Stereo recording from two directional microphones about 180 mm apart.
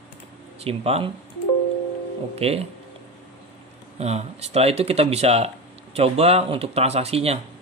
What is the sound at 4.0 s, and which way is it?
Speech, 35° right (ahead or behind).